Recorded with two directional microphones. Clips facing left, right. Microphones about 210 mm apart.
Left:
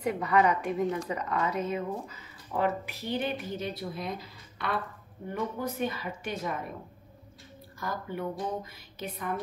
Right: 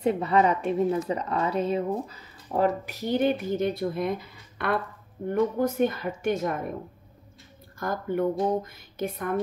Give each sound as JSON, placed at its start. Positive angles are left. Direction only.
{"t": 0.0, "sound": "speech", "side_deg": -25}
{"t": 7.8, "sound": "speech", "side_deg": -50}